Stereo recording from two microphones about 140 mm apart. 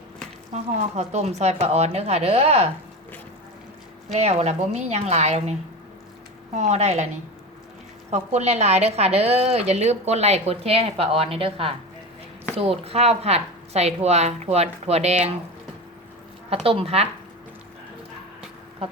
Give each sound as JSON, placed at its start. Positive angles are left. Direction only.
{"t": 0.5, "sound": "a woman's voice", "side_deg": -50}
{"t": 4.1, "sound": "a woman's voice", "side_deg": -50}
{"t": 6.6, "sound": "a woman's voice", "side_deg": -50}
{"t": 8.1, "sound": "a woman's voice", "side_deg": -50}
{"t": 16.5, "sound": "a woman's voice", "side_deg": -45}